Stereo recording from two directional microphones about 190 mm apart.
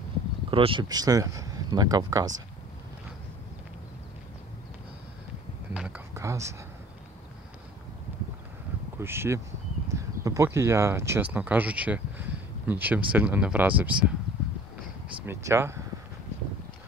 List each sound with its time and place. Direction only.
0.5 s speech: 25° right (ahead or behind)
5.7 s a sound: 5° right (ahead or behind)
9.0 s speech: 10° right (ahead or behind)
15.2 s speech: 15° right (ahead or behind)